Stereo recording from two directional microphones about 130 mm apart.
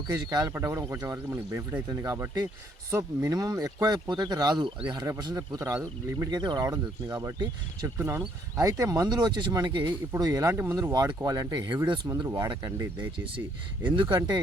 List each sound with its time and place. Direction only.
0.1 s speech: 30° right (ahead or behind)
6.1 s speech: 35° right (ahead or behind)
7.9 s speech: 20° right (ahead or behind); by 14.2 s 40° right (ahead or behind)